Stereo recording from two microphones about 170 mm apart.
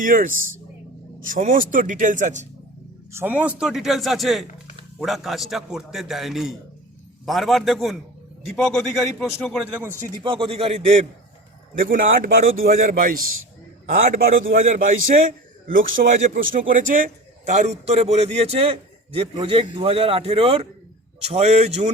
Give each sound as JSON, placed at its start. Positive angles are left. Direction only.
{"t": 0.0, "sound": "speech", "side_deg": -55}
{"t": 3.1, "sound": "a man's voice", "side_deg": -10}
{"t": 10.2, "sound": "a man's voice", "side_deg": -30}
{"t": 11.8, "sound": "a man's voice", "side_deg": -55}
{"t": 14.8, "sound": "a man's voice", "side_deg": -50}